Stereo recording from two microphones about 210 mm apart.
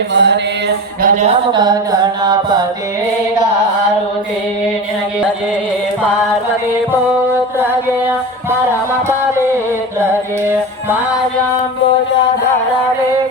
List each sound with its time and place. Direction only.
0.1 s a sound: 55° right (ahead or behind)
1.0 s speech: 35° right (ahead or behind)
1.5 s music: 20° right (ahead or behind)